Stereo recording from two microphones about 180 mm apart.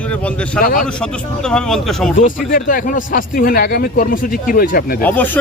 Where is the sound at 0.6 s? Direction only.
50° left (ahead or behind).